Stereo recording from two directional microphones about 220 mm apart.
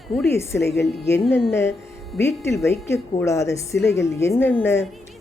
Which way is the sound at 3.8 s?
55° left (ahead or behind).